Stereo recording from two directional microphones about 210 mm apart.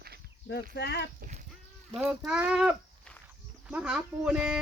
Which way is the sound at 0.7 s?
50° left (ahead or behind).